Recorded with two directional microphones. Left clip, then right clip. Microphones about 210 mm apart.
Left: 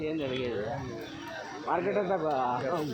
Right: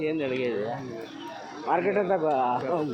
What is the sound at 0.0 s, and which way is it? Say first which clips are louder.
Speech: right 5 dB; 15° right (ahead or behind).